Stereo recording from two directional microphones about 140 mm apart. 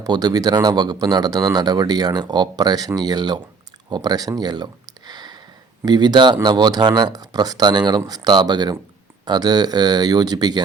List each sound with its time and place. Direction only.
0.0 s speech: 30° right (ahead or behind)
3.8 s a sound: 30° right (ahead or behind)
5.8 s speech: 30° right (ahead or behind)